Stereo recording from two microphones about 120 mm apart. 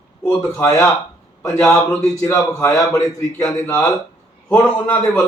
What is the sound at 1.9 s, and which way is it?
A man's voice, 25° left (ahead or behind).